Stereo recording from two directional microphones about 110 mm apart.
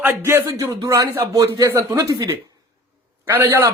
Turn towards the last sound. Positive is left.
turn(degrees=-20)  # may be behind; listen again after turning